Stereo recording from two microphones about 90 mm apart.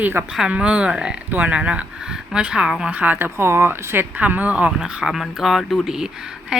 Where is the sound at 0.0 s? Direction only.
25° right (ahead or behind).